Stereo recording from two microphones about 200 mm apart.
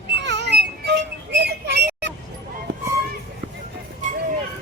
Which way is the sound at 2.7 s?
65° right (ahead or behind).